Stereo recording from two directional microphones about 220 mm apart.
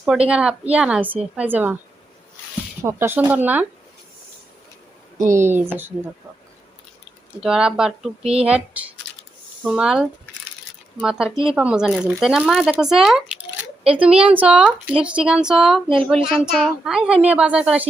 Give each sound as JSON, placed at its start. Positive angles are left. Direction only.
{"t": 0.3, "sound": "a woman's voice", "side_deg": -5}
{"t": 2.8, "sound": "speech", "side_deg": -10}
{"t": 5.3, "sound": "speech", "side_deg": -10}
{"t": 7.4, "sound": "a woman's voice", "side_deg": -5}
{"t": 8.2, "sound": "speech", "side_deg": -25}
{"t": 8.4, "sound": "a woman's voice", "side_deg": -5}